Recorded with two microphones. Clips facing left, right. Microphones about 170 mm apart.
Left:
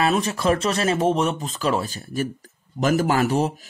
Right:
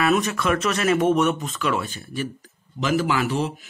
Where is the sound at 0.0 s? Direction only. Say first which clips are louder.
Even; 30° left (ahead or behind).